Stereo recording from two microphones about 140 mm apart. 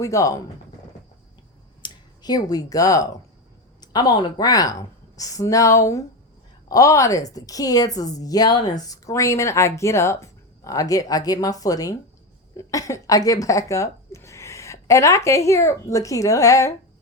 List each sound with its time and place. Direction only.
0.0 s speech: 25° left (ahead or behind)
1.8 s speech: 30° left (ahead or behind)